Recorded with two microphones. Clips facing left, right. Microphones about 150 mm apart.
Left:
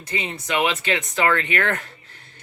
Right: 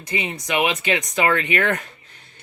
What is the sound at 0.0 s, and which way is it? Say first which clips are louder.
Speech: right 2 dB; 20° right (ahead or behind).